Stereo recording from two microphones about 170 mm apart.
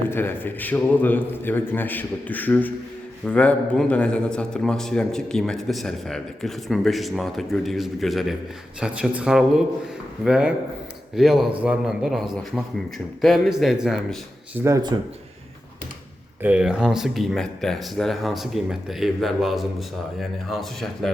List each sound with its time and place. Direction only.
0.1 s a man's voice: 10° left (ahead or behind)
14.6 s speech: 20° right (ahead or behind)
16.4 s speech: 5° right (ahead or behind)